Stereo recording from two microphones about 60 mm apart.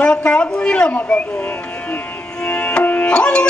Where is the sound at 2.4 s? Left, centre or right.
Left.